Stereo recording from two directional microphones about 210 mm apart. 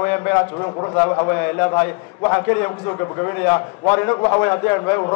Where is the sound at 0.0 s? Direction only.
10° left (ahead or behind).